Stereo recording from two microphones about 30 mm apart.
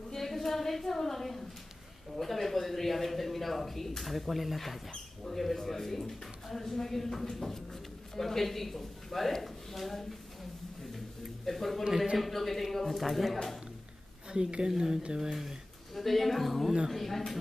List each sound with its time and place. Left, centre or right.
0.1 s a sound: centre
2.1 s speech: centre
4.1 s speech: centre
11.4 s a sound: centre
12.2 s speech: centre
14.3 s speech: right
14.7 s speech: centre
15.9 s a man's voice: centre